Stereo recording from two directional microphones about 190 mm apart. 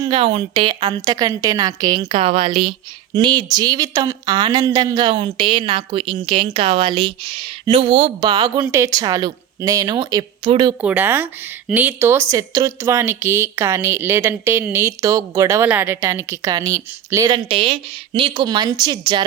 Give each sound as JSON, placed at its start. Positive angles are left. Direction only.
{"t": 0.0, "sound": "a woman's voice", "side_deg": -25}
{"t": 10.8, "sound": "speech", "side_deg": -10}